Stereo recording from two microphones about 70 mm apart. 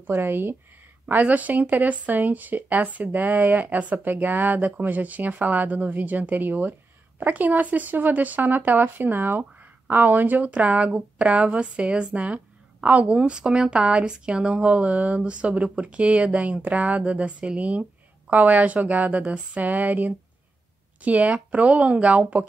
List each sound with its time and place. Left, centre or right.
0.0 s speech: right